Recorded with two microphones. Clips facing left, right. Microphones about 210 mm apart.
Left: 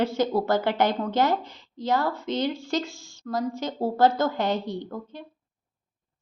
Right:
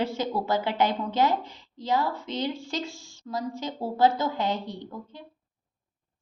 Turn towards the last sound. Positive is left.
turn(degrees=50)  # may be behind; listen again after turning